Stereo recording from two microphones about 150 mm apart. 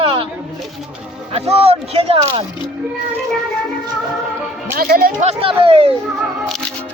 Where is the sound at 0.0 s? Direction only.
35° right (ahead or behind).